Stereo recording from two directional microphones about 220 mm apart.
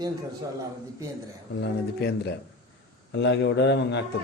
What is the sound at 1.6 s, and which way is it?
A man's voice, 50° left (ahead or behind).